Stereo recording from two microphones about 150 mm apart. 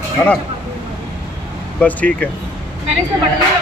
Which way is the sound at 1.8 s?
10° left (ahead or behind).